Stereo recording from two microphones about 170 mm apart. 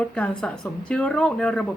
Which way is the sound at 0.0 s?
5° left (ahead or behind).